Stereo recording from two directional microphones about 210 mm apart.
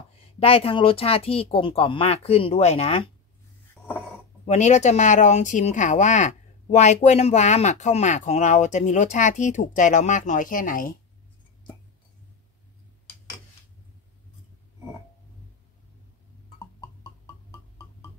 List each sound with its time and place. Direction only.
0.4 s speech: 25° left (ahead or behind)
4.5 s speech: 35° left (ahead or behind)